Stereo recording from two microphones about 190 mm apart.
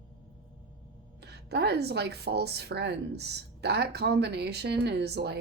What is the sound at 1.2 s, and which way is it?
Speech, 60° right (ahead or behind).